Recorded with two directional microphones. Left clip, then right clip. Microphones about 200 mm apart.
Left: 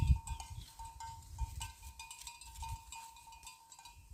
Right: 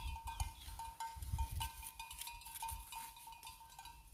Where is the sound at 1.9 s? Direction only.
25° left (ahead or behind).